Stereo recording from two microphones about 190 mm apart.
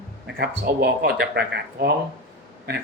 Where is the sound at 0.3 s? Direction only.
55° right (ahead or behind).